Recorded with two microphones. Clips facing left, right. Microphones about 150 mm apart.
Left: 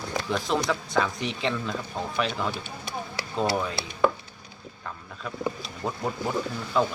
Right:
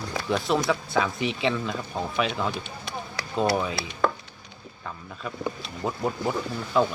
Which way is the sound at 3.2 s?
25° left (ahead or behind).